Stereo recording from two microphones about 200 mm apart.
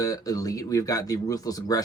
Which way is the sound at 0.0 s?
15° left (ahead or behind).